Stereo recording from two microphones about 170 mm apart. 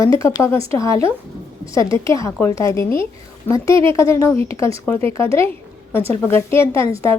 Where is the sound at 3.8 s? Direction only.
30° right (ahead or behind).